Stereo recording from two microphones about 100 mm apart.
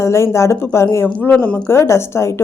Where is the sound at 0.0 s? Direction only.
30° left (ahead or behind).